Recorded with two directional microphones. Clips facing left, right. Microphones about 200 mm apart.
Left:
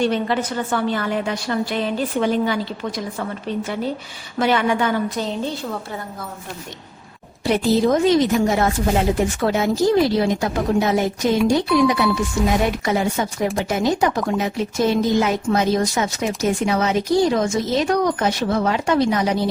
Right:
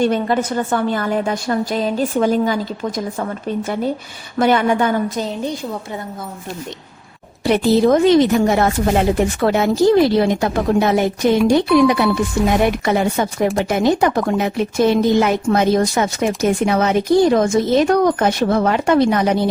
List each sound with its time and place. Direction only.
0.0 s a woman's voice: 45° right (ahead or behind)
7.4 s speech: 65° right (ahead or behind)